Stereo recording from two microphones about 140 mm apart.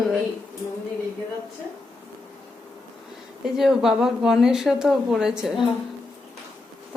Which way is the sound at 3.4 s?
5° right (ahead or behind).